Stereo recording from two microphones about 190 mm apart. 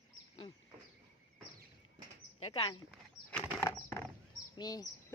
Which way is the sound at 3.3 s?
10° left (ahead or behind).